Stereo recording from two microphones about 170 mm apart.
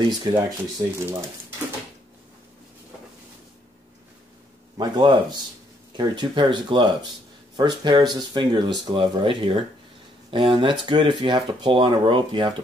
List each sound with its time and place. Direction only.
0.0 s speech: 30° right (ahead or behind)
4.7 s speech: 25° right (ahead or behind)